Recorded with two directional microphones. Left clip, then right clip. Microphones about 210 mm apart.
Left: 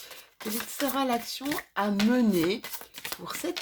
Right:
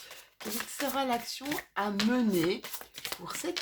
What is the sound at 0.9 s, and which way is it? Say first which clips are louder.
Speech: left 2 dB; 35° left (ahead or behind).